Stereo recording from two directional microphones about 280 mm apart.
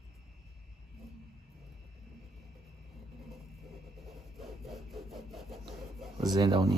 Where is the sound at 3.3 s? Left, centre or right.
Centre.